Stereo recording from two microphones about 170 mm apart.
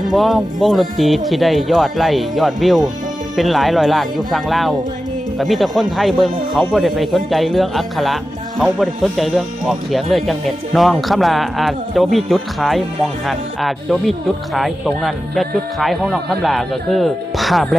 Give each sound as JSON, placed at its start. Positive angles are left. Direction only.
{"t": 0.1, "sound": "speech", "side_deg": 0}